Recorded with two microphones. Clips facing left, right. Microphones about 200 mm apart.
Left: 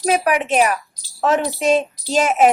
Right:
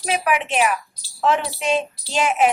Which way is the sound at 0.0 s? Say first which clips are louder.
Left 4 dB; 40° left (ahead or behind).